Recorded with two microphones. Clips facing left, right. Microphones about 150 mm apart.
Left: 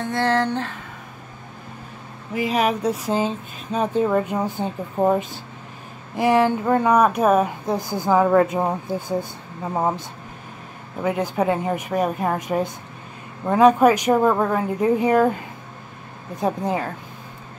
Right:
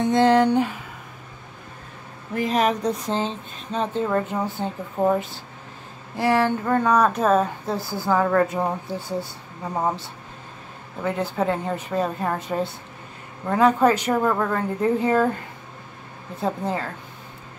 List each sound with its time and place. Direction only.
0.0 s a sound: 15° right (ahead or behind)
2.3 s speech: 5° left (ahead or behind)
16.3 s speech: 15° left (ahead or behind)